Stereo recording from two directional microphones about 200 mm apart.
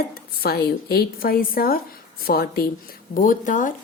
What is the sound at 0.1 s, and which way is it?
A woman's voice, 50° left (ahead or behind).